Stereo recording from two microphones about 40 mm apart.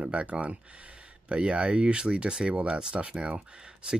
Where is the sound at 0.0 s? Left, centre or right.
Right.